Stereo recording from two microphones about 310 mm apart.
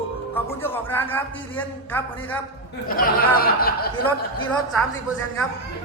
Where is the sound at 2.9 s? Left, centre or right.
Left.